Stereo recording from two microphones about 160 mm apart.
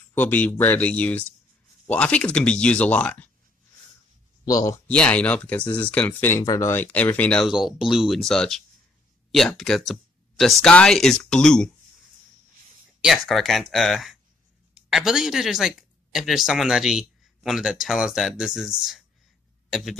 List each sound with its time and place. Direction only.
0.1 s speech: 10° left (ahead or behind)
4.5 s speech: 25° left (ahead or behind)
4.8 s speech: 5° left (ahead or behind)
13.0 s speech: centre (ahead or behind)